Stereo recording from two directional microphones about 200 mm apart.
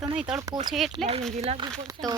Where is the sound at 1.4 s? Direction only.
30° right (ahead or behind).